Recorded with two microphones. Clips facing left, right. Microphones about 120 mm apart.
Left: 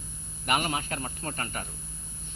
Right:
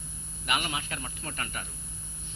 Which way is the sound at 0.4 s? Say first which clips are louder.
Left 4 dB; 40° left (ahead or behind).